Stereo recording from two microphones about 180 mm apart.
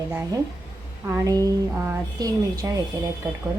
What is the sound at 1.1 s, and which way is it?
A woman's voice, 20° right (ahead or behind).